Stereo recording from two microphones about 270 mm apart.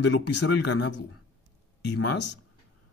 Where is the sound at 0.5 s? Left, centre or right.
Left.